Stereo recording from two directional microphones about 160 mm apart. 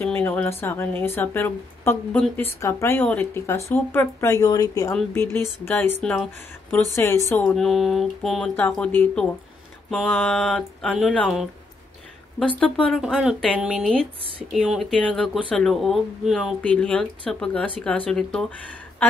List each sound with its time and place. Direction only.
0.0 s speech: 10° left (ahead or behind)
5.9 s speech: centre (ahead or behind)
7.0 s speech: 15° left (ahead or behind)
7.5 s speech: centre (ahead or behind)
9.8 s a sound: centre (ahead or behind)
10.2 s speech: centre (ahead or behind)
12.8 s speech: centre (ahead or behind)